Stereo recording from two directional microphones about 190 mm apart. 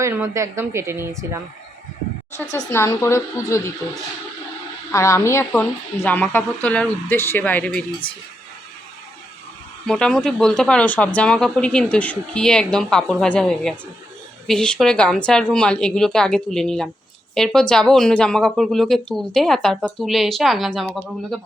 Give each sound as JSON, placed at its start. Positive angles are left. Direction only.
{"t": 0.0, "sound": "speech", "side_deg": -15}
{"t": 2.5, "sound": "speech", "side_deg": 15}
{"t": 4.9, "sound": "speech", "side_deg": 15}
{"t": 9.8, "sound": "speech", "side_deg": 5}